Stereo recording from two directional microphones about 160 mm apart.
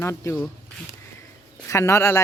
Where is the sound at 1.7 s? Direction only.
15° left (ahead or behind).